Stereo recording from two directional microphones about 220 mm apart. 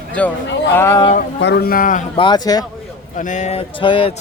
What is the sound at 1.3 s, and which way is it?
Speech, 50° left (ahead or behind).